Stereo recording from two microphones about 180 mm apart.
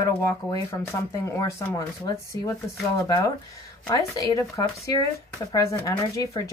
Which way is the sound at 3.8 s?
20° left (ahead or behind).